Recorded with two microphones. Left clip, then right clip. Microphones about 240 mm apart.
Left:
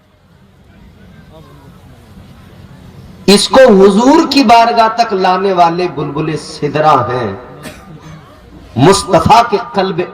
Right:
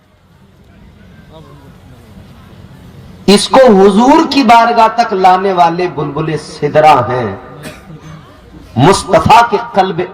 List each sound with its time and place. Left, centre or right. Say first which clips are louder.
3.2 s a man's voice: even; centre
8.7 s a man's voice: even; centre